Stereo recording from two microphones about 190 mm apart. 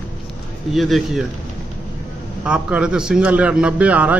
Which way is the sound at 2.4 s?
5° right (ahead or behind).